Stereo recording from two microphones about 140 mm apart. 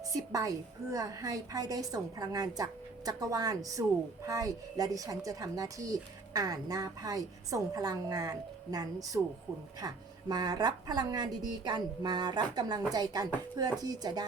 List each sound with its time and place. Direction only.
0.1 s a woman's voice: 25° right (ahead or behind)